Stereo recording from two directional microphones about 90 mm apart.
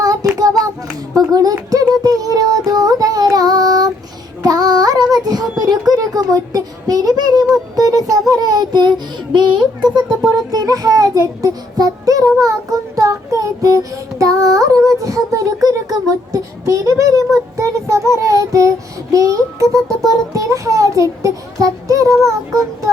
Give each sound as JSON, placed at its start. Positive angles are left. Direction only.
{"t": 0.0, "sound": "child singing", "side_deg": -45}
{"t": 1.1, "sound": "a sound", "side_deg": -40}
{"t": 2.6, "sound": "child singing", "side_deg": -45}
{"t": 4.4, "sound": "female singing", "side_deg": -45}
{"t": 5.1, "sound": "child singing", "side_deg": -45}
{"t": 8.3, "sound": "a sound", "side_deg": -45}
{"t": 13.0, "sound": "child singing", "side_deg": -40}